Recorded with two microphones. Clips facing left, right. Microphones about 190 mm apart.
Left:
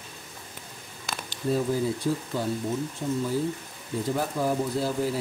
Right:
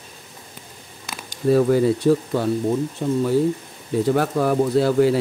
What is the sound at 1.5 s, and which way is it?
Speech, 75° right (ahead or behind).